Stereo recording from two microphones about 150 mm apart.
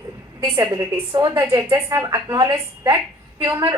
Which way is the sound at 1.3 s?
15° right (ahead or behind).